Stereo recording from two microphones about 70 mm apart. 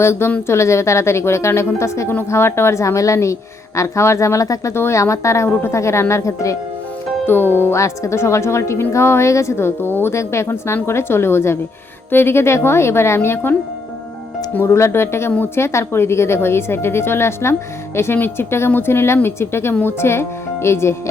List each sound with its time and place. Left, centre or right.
0.0 s a woman's voice: left
4.7 s a woman's voice: left
7.3 s speech: left
7.8 s speech: left